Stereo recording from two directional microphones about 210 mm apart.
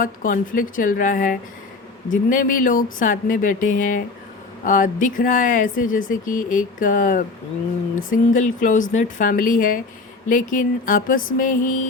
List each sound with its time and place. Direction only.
0.0 s speech: 40° left (ahead or behind)